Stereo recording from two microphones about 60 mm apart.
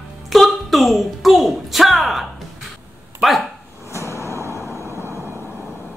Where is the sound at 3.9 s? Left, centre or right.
Left.